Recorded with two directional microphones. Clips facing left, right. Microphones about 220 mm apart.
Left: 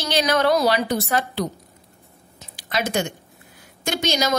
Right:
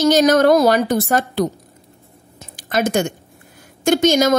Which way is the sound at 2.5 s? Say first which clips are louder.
Right 6 dB; 45° right (ahead or behind).